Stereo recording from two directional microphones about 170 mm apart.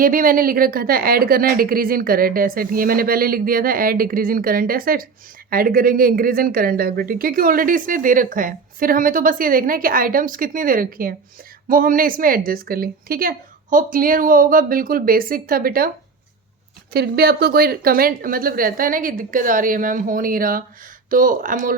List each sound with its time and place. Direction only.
0.0 s speech: 55° right (ahead or behind)
16.9 s speech: 70° right (ahead or behind); by 21.8 s 50° right (ahead or behind)